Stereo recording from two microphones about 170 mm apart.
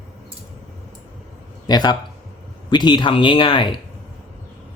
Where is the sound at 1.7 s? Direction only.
25° left (ahead or behind).